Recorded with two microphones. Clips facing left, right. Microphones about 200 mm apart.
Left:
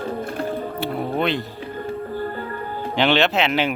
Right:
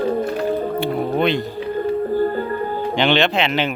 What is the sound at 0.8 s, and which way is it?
Music, centre (ahead or behind).